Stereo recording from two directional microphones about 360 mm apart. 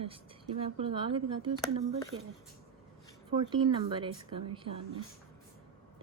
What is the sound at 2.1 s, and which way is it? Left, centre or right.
Speech, right.